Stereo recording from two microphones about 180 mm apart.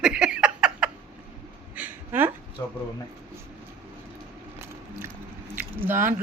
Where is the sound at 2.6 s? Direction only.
15° left (ahead or behind).